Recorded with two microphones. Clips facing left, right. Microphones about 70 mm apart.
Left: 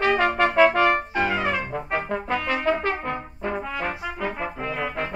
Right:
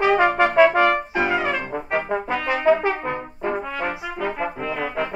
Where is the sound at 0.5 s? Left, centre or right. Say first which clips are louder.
Right 2 dB; centre.